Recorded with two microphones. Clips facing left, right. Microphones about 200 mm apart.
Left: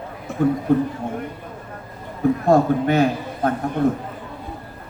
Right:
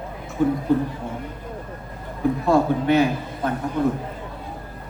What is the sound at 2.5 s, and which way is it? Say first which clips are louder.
A man's voice: left 1 dB; 50° left (ahead or behind).